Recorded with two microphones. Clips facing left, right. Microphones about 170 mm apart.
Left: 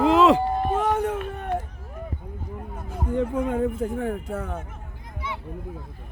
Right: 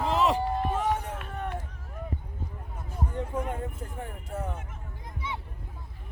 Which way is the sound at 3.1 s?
90° left.